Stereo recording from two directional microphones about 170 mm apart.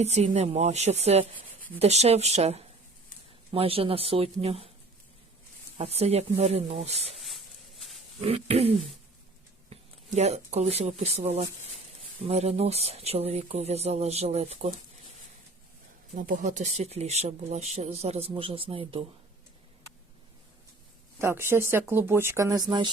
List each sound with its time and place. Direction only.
0.0 s speech: 40° right (ahead or behind)
5.7 s speech: 40° right (ahead or behind)
7.2 s a sound: centre (ahead or behind)
8.2 s speech: 35° right (ahead or behind)
10.2 s speech: 40° right (ahead or behind)
16.1 s speech: 55° right (ahead or behind); by 19.0 s 35° right (ahead or behind)
21.2 s speech: 15° right (ahead or behind)